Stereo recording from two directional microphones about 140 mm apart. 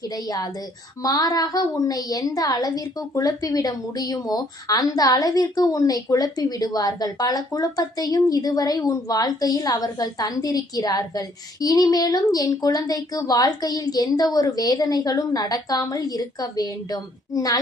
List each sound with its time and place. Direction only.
0.1 s a woman's voice: 25° left (ahead or behind)